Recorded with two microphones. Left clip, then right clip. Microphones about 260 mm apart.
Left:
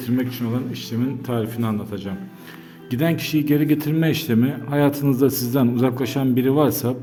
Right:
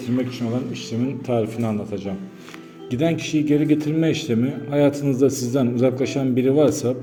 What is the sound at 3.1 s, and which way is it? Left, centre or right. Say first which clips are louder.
A man's voice: left 2 dB; left.